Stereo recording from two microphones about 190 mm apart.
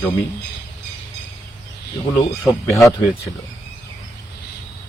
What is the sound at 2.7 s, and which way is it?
Speech, 15° left (ahead or behind).